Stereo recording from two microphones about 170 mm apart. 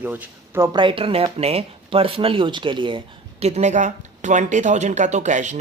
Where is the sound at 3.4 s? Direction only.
40° right (ahead or behind).